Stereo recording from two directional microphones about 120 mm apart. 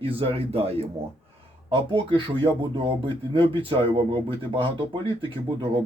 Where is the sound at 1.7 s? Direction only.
45° right (ahead or behind).